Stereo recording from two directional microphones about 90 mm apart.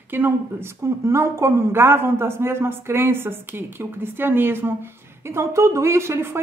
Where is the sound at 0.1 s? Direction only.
25° right (ahead or behind).